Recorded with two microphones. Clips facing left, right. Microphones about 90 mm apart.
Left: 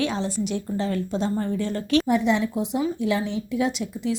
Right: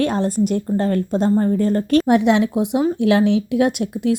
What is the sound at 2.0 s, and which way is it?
A woman's voice, 65° right (ahead or behind).